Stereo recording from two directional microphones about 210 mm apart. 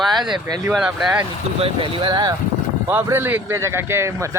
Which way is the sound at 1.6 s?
25° right (ahead or behind).